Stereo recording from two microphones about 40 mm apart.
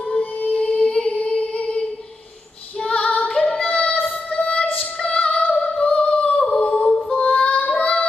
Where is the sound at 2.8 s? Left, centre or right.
Left.